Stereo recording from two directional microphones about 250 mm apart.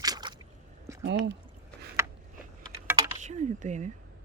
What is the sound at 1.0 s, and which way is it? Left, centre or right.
Speech, right.